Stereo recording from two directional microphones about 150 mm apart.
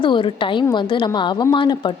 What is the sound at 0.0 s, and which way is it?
A woman's voice, 35° left (ahead or behind).